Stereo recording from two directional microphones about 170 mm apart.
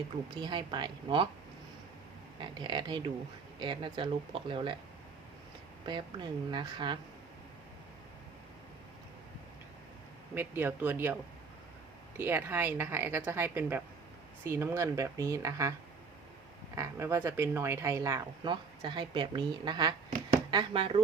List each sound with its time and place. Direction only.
0.3 s speech: 25° right (ahead or behind)
2.4 s speech: 30° right (ahead or behind)
5.8 s speech: 25° right (ahead or behind)
10.3 s speech: 10° right (ahead or behind)
16.7 s speech: 15° right (ahead or behind)
18.4 s speech: 25° right (ahead or behind)
20.1 s a sound: 30° right (ahead or behind)